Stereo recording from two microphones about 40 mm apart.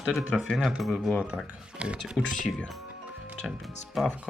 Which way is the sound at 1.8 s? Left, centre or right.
Right.